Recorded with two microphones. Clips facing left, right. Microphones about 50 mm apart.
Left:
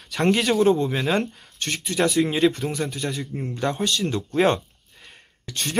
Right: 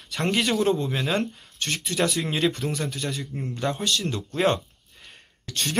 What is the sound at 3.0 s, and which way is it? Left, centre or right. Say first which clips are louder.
Speech: left 2 dB; centre.